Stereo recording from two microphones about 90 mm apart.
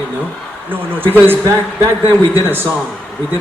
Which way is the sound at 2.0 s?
35° left (ahead or behind).